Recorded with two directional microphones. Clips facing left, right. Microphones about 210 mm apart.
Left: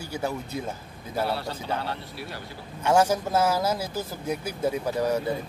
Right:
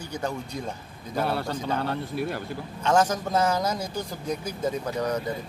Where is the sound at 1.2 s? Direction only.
50° right (ahead or behind).